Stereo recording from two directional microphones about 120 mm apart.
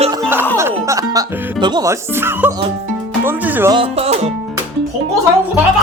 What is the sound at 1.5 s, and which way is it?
Speech, 40° right (ahead or behind).